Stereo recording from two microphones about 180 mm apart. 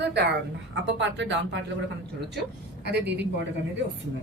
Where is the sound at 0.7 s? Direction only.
85° right.